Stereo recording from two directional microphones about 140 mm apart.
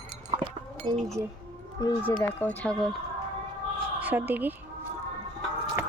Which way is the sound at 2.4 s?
10° left (ahead or behind).